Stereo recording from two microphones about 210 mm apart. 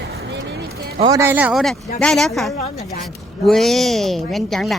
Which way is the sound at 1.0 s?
15° right (ahead or behind).